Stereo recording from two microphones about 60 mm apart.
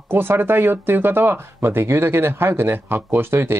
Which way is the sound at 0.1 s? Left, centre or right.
Right.